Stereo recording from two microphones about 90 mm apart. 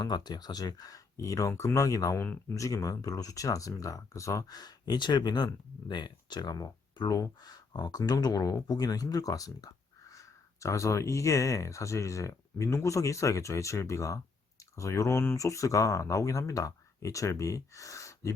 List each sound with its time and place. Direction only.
0.0 s speech: 50° left (ahead or behind)
2.2 s speech: 20° left (ahead or behind)
2.6 s speech: 40° left (ahead or behind)
4.5 s speech: 50° left (ahead or behind)